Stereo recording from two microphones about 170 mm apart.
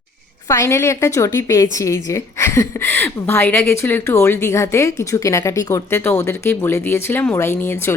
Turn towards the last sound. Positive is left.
turn(degrees=15)  # may be behind; listen again after turning